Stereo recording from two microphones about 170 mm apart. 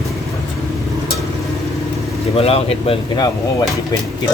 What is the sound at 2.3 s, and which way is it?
Speech, 35° left (ahead or behind).